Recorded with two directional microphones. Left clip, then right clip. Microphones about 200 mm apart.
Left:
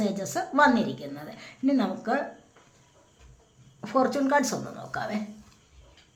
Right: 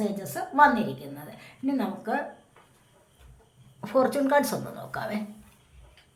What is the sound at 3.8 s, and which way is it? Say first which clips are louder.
Speech: right 1 dB; centre (ahead or behind).